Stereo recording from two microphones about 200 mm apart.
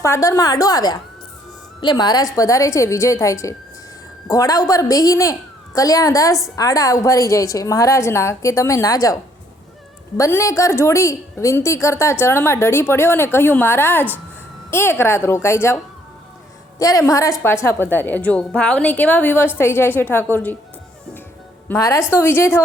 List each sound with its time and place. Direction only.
0.0 s a woman's voice: 15° left (ahead or behind)
21.7 s a woman's voice: 15° left (ahead or behind)